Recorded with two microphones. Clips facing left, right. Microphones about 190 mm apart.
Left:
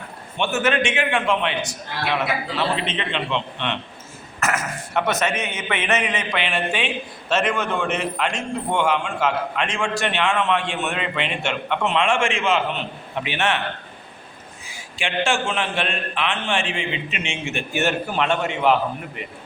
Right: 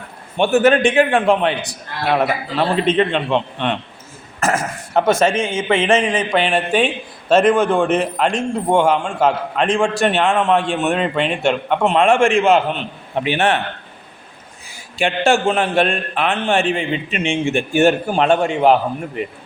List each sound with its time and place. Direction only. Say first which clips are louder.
0.3 s a man's voice: right 8 dB; 35° right (ahead or behind)
4.4 s a man's voice: right 5 dB; 30° right (ahead or behind); by 7.8 s 50° right (ahead or behind)
7.9 s a man's voice: right 7 dB; 35° right (ahead or behind)
14.9 s a man's voice: right 7 dB; 35° right (ahead or behind)
17.5 s a man's voice: right 8 dB; 30° right (ahead or behind)